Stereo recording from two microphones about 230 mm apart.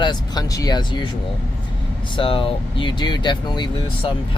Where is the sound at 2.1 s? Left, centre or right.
Left.